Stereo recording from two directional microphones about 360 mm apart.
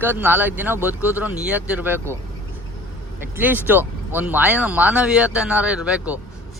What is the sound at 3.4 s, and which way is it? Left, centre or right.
Speech, centre.